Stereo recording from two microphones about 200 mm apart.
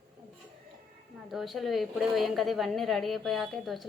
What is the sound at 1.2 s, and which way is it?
A woman's voice, centre (ahead or behind).